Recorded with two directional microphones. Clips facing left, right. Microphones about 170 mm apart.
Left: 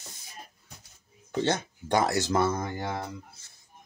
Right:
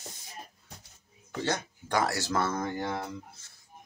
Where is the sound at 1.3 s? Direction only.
25° left (ahead or behind); by 3.1 s 10° left (ahead or behind).